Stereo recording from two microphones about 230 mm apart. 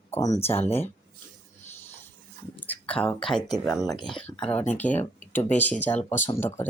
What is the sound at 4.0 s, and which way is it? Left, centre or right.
Speech, left.